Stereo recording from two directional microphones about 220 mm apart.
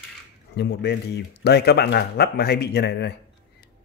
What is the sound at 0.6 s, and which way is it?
Speech, 50° left (ahead or behind).